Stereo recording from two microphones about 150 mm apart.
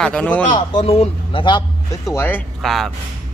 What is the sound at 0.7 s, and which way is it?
Speech, 40° left (ahead or behind).